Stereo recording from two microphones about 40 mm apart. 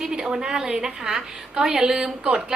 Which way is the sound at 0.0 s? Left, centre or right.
Centre.